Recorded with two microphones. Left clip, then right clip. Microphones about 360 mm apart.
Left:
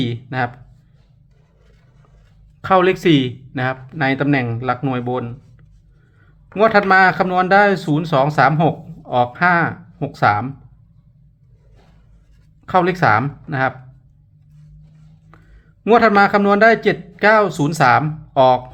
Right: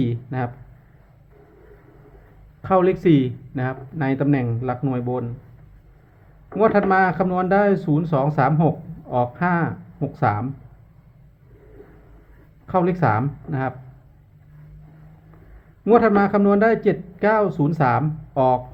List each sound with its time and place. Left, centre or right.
0.0 s speech: centre
2.6 s speech: centre
6.5 s speech: centre
12.6 s speech: centre
15.8 s speech: centre